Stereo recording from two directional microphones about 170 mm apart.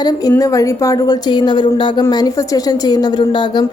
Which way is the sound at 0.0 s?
20° left (ahead or behind).